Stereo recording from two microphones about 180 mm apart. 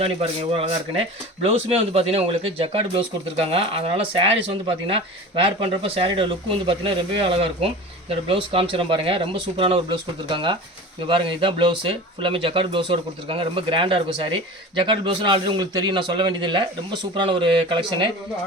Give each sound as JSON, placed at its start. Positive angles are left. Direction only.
{"t": 0.0, "sound": "speech", "side_deg": -30}